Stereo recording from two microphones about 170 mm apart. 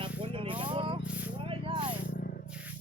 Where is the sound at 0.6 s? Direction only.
30° right (ahead or behind).